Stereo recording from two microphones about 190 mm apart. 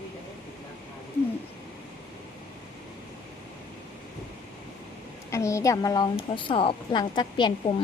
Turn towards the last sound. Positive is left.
turn(degrees=25)  # may be behind; listen again after turning